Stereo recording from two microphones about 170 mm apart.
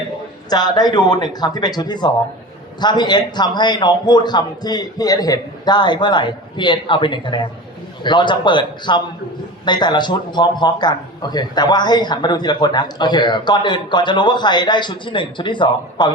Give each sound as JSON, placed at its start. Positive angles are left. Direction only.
{"t": 0.5, "sound": "a man's voice", "side_deg": 25}